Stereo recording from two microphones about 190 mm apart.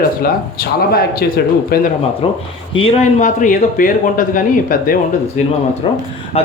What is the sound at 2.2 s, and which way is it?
Speech, 30° left (ahead or behind).